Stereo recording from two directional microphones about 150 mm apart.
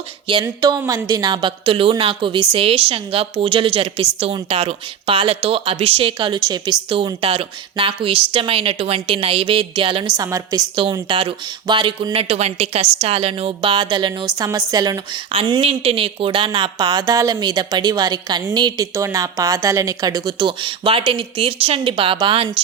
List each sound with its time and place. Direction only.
0.4 s speech: 25° right (ahead or behind)
10.2 s a woman's voice: 20° right (ahead or behind)